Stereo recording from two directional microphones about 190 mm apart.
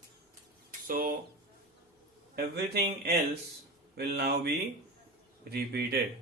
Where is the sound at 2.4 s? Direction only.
55° right (ahead or behind).